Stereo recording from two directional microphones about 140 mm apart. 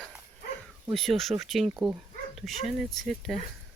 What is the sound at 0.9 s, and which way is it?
Speech, centre (ahead or behind).